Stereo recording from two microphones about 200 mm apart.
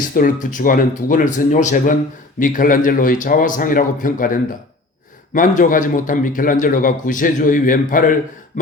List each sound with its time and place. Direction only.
0.1 s a man's voice: 45° left (ahead or behind)